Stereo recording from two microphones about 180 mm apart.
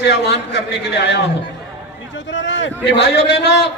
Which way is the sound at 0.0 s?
70° left (ahead or behind).